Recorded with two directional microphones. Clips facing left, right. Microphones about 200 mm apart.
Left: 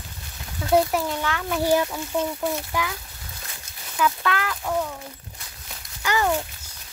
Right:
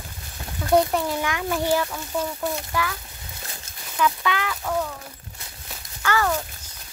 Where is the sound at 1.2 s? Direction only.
10° right (ahead or behind).